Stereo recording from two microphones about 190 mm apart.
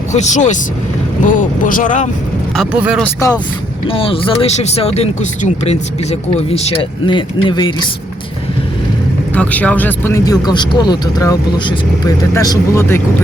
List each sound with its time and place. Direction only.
0.1 s speech: 40° left (ahead or behind)
2.6 s speech: 5° right (ahead or behind)
3.0 s speech: 15° left (ahead or behind)
3.8 s speech: 30° left (ahead or behind)
9.3 s speech: 10° left (ahead or behind)